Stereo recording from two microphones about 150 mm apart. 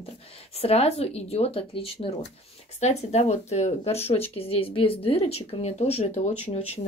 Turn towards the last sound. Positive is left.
turn(degrees=45)  # may be behind; listen again after turning